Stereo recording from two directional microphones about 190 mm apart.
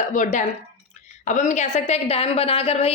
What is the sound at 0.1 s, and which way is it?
A woman's voice, 40° left (ahead or behind).